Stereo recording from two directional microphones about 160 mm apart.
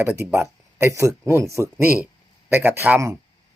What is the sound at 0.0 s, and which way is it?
Speech, 15° right (ahead or behind).